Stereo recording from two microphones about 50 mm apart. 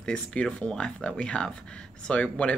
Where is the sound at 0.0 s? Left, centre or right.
Left.